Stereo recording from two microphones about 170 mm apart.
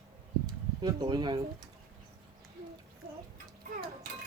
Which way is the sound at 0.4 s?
20° right (ahead or behind).